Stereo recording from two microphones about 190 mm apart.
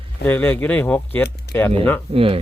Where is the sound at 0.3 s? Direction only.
10° left (ahead or behind).